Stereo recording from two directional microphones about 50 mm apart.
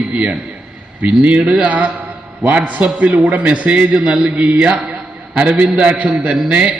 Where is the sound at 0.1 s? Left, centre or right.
Right.